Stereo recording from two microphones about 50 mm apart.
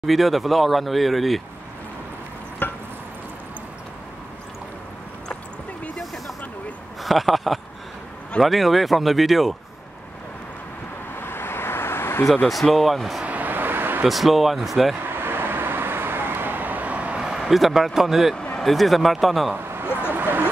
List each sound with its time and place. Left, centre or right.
0.0 s speech: centre
2.6 s chop: left
7.0 s speech: centre
11.1 s vehicle: left
12.6 s speech: centre
13.2 s vehicle: right
14.0 s speech: centre
15.0 s vehicle: right
17.2 s speech: centre
18.3 s a sound: centre
18.6 s speech: centre
19.9 s vehicle: right
20.2 s a sound: right